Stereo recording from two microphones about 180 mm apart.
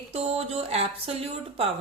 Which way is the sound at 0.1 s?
35° right (ahead or behind).